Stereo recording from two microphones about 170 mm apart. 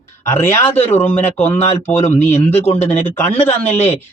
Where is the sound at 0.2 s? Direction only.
15° left (ahead or behind).